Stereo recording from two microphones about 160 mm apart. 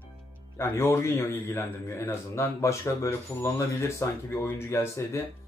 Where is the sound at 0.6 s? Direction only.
15° left (ahead or behind).